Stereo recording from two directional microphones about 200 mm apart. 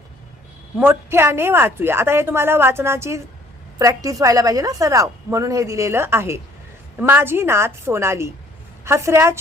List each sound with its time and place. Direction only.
0.8 s a woman's voice: 10° right (ahead or behind)